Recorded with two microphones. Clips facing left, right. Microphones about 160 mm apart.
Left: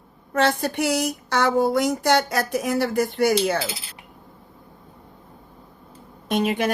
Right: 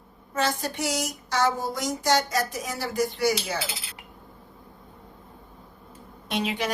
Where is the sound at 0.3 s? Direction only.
60° left (ahead or behind).